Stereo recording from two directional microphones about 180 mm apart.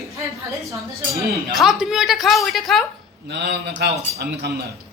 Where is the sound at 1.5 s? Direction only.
Centre (ahead or behind).